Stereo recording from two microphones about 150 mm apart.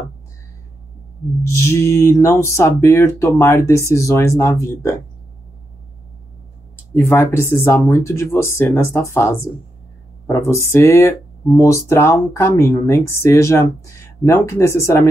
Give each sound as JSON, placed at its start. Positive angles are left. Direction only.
{"t": 1.4, "sound": "speech", "side_deg": 20}
{"t": 6.9, "sound": "speech", "side_deg": 15}